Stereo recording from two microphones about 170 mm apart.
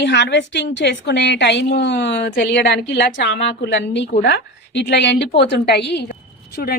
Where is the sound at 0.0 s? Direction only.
90° left.